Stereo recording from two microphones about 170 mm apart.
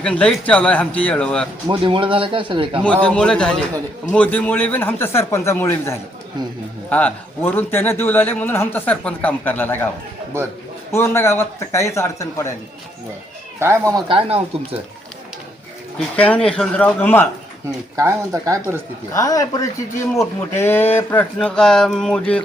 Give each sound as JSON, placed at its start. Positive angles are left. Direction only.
{"t": 0.0, "sound": "a man's voice", "side_deg": 5}
{"t": 1.8, "sound": "a man's voice", "side_deg": -30}
{"t": 2.8, "sound": "a man's voice", "side_deg": 5}
{"t": 10.3, "sound": "speech", "side_deg": -15}
{"t": 10.9, "sound": "a man's voice", "side_deg": 15}
{"t": 13.9, "sound": "a man's voice", "side_deg": -30}
{"t": 16.0, "sound": "a man's voice", "side_deg": 10}
{"t": 17.9, "sound": "speech", "side_deg": -15}
{"t": 19.1, "sound": "a man's voice", "side_deg": 20}